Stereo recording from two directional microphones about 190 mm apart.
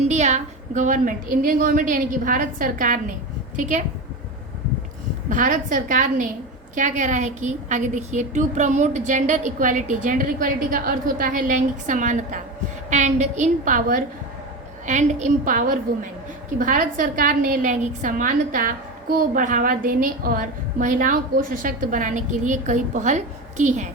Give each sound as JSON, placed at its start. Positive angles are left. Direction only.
{"t": 0.1, "sound": "a woman's voice", "side_deg": -35}
{"t": 5.3, "sound": "a woman's voice", "side_deg": -45}